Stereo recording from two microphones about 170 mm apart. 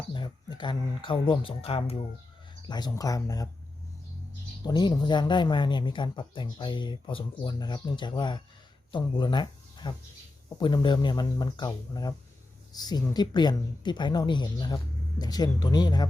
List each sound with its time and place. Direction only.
0.1 s speech: 25° left (ahead or behind)
4.6 s speech: 25° left (ahead or behind)